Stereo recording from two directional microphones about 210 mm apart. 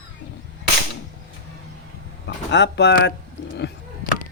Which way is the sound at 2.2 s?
55° left (ahead or behind).